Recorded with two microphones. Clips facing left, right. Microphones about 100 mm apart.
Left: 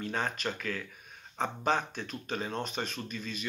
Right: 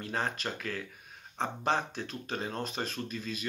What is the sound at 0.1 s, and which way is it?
Speech, 35° right (ahead or behind).